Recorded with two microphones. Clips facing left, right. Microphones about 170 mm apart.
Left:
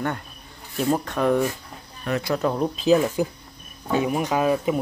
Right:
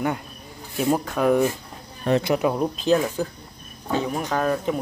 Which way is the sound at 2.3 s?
5° right (ahead or behind).